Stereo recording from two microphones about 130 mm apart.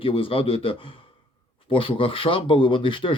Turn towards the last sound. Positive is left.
turn(degrees=40)  # may be behind; listen again after turning